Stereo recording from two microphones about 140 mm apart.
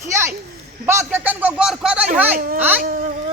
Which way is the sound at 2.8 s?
85° right.